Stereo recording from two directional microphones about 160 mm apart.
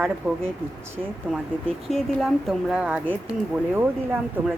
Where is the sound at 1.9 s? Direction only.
Centre (ahead or behind).